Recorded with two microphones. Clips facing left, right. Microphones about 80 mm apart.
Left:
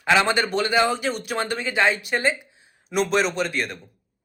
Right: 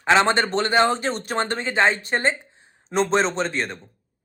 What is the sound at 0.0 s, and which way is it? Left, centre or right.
A man's voice, right.